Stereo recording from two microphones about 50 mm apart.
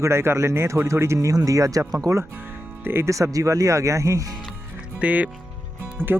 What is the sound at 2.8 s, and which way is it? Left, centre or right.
Speech, right.